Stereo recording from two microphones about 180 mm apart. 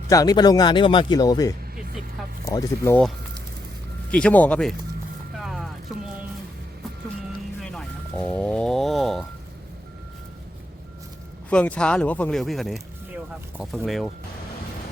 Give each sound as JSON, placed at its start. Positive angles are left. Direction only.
{"t": 0.1, "sound": "speech", "side_deg": 20}
{"t": 4.1, "sound": "speech", "side_deg": 5}
{"t": 5.4, "sound": "a sound", "side_deg": 0}
{"t": 7.6, "sound": "music", "side_deg": 5}
{"t": 11.4, "sound": "speech", "side_deg": 5}
{"t": 13.8, "sound": "speech", "side_deg": 0}